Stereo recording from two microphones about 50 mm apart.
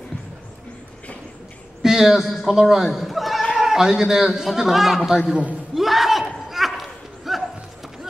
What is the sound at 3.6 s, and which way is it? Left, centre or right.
A man's voice, centre.